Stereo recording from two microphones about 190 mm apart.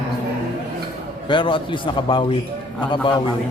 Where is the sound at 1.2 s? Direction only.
25° left (ahead or behind).